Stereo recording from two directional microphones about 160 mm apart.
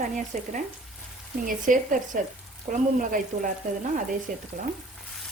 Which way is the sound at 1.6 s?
55° right (ahead or behind).